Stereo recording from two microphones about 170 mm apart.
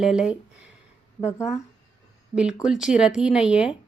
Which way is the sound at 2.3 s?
5° right (ahead or behind).